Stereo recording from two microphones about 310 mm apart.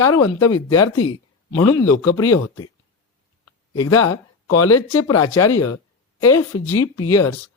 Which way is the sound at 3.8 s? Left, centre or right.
Left.